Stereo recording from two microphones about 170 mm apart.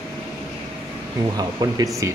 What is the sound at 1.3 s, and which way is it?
Speech, 25° right (ahead or behind).